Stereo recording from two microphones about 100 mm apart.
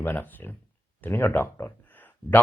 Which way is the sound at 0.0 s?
20° left (ahead or behind).